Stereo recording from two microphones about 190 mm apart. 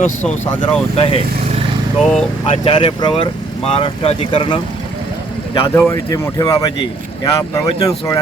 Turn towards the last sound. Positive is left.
turn(degrees=20)  # may be behind; listen again after turning